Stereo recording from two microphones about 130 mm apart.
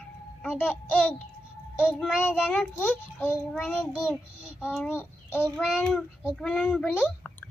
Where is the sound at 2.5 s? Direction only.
15° left (ahead or behind).